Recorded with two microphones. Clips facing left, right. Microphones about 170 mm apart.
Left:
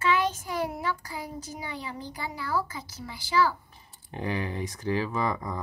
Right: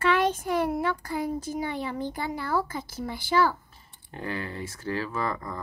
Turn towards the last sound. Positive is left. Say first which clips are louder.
# left 2 dB
turn(degrees=15)  # may be behind; listen again after turning